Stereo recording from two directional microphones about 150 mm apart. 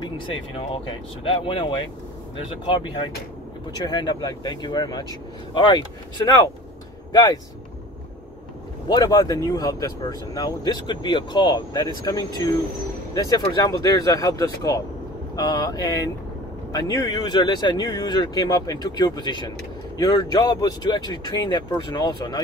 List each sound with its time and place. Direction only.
0.0 s speech: 35° left (ahead or behind)
8.8 s speech: 25° left (ahead or behind)